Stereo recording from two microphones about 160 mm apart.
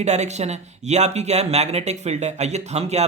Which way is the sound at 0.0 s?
45° right (ahead or behind).